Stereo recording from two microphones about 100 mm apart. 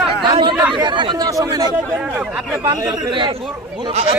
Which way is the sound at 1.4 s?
35° right (ahead or behind).